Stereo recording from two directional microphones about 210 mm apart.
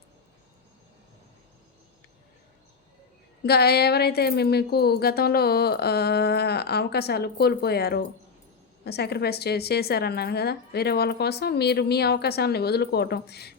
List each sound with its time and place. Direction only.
3.4 s a woman's voice: 50° left (ahead or behind)